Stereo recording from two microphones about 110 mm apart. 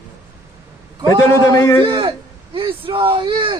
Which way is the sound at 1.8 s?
45° right (ahead or behind).